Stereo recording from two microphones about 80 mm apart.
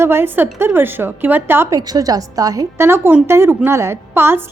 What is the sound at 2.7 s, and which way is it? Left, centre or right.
A woman's voice, right.